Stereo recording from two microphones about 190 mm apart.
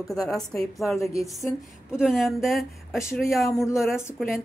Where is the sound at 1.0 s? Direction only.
15° left (ahead or behind).